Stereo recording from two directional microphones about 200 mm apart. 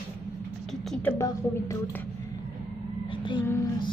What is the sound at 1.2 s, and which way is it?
Speech, 15° left (ahead or behind).